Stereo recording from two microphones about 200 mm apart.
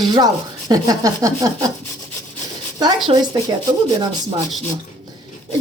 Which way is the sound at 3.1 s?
20° right (ahead or behind).